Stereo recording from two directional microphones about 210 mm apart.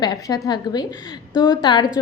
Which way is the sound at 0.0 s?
20° left (ahead or behind).